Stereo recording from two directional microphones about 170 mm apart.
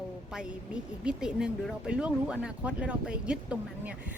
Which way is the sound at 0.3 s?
5° right (ahead or behind).